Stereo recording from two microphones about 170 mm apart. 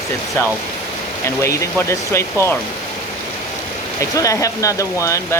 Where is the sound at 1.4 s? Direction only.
15° left (ahead or behind).